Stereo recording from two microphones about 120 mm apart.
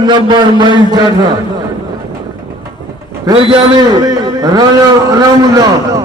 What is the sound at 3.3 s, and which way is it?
A man's voice, 35° right (ahead or behind).